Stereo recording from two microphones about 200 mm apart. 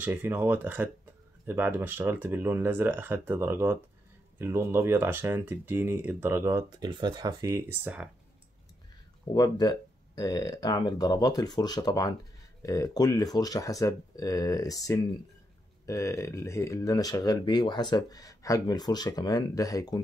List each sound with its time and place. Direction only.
0.0 s speech: 10° right (ahead or behind)
9.3 s speech: 20° left (ahead or behind)